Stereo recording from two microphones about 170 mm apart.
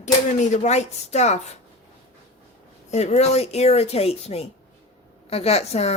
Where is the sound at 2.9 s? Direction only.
40° left (ahead or behind).